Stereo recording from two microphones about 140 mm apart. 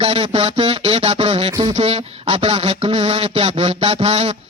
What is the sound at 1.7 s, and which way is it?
Speech, 45° right (ahead or behind).